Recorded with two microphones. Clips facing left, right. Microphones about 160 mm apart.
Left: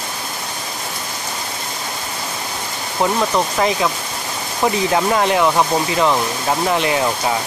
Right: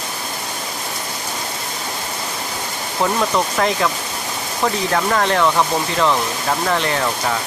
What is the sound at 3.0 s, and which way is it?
Speech, 5° left (ahead or behind).